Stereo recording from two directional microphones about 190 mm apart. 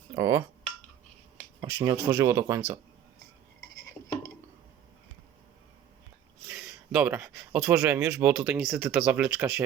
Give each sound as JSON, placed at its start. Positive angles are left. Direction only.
{"t": 0.1, "sound": "speech", "side_deg": -15}
{"t": 1.6, "sound": "speech", "side_deg": -15}
{"t": 6.5, "sound": "speech", "side_deg": -5}